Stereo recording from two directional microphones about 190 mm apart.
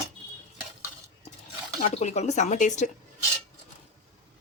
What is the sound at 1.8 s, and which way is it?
Speech, 35° left (ahead or behind).